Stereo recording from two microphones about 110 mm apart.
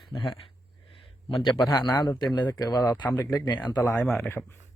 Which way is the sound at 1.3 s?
40° left (ahead or behind).